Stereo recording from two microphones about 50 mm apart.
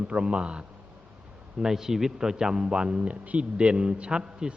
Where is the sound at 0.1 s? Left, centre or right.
Right.